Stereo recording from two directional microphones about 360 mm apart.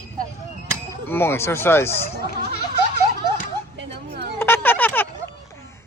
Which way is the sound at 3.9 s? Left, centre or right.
Right.